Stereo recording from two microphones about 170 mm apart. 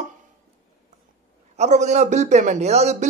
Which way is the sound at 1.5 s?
40° right (ahead or behind).